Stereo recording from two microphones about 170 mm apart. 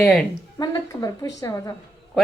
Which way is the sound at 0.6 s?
25° left (ahead or behind).